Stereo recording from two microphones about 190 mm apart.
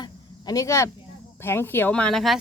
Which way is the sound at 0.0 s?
20° left (ahead or behind).